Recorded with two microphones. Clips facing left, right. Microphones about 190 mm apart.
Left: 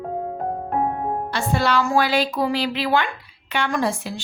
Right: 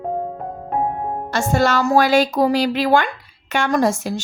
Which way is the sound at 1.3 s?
45° right (ahead or behind).